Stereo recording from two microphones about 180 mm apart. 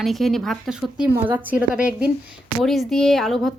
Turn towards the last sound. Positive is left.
turn(degrees=0)  # may be behind; listen again after turning